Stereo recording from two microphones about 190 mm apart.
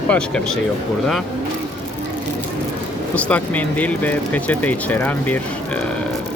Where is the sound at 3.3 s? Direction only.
10° left (ahead or behind).